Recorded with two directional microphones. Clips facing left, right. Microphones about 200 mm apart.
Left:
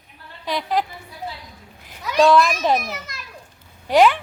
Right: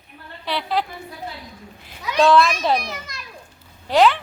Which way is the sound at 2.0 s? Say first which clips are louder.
Left 2 dB; centre (ahead or behind).